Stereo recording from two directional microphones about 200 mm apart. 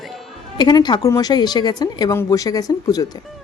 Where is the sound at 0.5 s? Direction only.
20° left (ahead or behind).